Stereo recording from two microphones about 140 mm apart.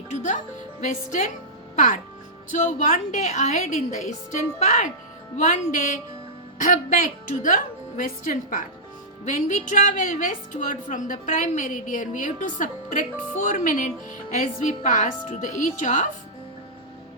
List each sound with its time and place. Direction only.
0.8 s a woman's voice: 60° left (ahead or behind)
5.5 s a woman's voice: 70° left (ahead or behind)